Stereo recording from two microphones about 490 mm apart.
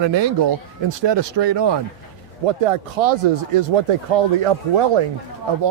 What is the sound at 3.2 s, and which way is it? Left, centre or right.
Speech, right.